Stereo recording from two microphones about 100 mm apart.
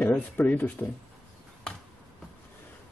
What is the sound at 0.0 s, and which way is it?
Speech, 15° left (ahead or behind).